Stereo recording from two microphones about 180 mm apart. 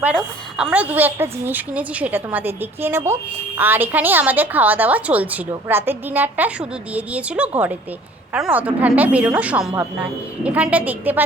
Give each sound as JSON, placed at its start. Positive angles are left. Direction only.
{"t": 0.1, "sound": "a woman's voice", "side_deg": 0}